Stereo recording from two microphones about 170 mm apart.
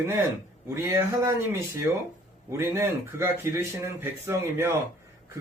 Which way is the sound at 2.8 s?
15° right (ahead or behind).